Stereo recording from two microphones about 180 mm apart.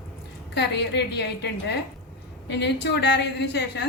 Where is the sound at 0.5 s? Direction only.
70° left (ahead or behind).